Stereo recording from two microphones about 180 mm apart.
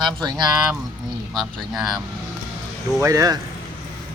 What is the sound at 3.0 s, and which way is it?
Speech, 20° right (ahead or behind).